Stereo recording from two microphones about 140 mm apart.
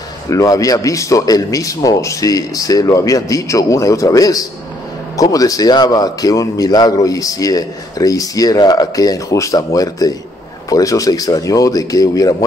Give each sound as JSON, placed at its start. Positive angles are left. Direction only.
{"t": 0.3, "sound": "a man's voice", "side_deg": 25}